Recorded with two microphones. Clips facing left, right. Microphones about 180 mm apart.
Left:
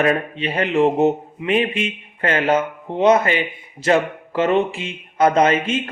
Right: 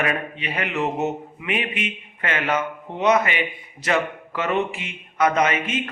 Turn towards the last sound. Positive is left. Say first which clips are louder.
# left 5 dB
turn(degrees=30)  # may be behind; listen again after turning